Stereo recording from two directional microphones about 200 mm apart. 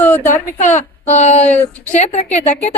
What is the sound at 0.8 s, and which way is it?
A woman's voice, 35° left (ahead or behind).